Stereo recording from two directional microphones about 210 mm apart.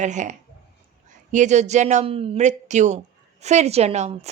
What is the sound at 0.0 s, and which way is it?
A woman's voice, 35° right (ahead or behind).